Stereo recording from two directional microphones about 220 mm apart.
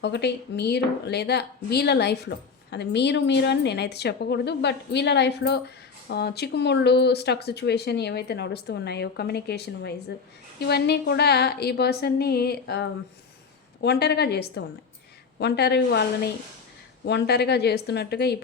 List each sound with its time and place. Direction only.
0.0 s speech: 50° left (ahead or behind)